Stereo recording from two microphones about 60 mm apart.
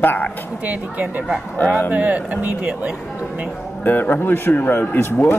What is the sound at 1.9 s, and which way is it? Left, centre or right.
Speech, right.